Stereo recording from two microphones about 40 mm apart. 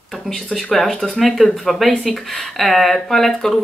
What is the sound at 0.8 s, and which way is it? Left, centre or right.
Speech, centre.